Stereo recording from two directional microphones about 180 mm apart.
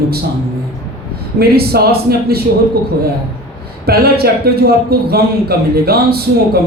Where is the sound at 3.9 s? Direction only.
60° right (ahead or behind).